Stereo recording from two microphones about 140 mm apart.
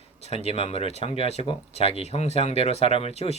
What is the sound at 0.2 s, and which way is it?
Speech, 50° left (ahead or behind).